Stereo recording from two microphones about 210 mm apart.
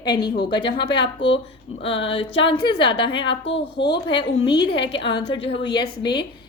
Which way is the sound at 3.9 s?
25° left (ahead or behind).